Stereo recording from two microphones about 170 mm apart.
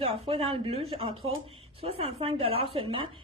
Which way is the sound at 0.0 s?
35° right (ahead or behind).